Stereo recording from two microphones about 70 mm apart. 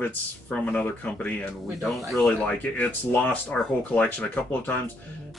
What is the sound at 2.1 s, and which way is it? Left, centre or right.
Speech, centre.